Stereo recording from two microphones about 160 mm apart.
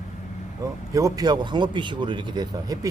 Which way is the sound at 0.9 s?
20° right (ahead or behind).